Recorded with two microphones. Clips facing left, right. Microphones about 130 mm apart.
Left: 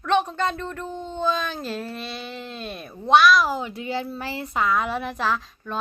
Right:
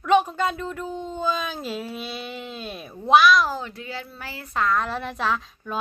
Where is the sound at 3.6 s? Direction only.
15° left (ahead or behind).